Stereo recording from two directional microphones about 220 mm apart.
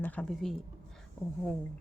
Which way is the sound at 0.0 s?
5° left (ahead or behind).